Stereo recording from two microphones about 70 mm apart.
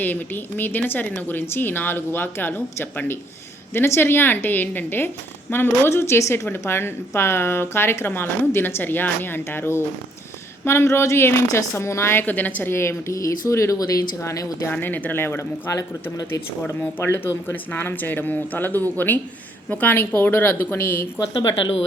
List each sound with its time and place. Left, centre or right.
0.0 s speech: left
12.7 s speech: left
14.7 s speech: left
16.6 s speech: left